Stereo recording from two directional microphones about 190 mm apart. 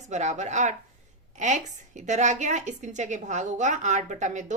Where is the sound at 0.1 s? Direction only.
40° right (ahead or behind).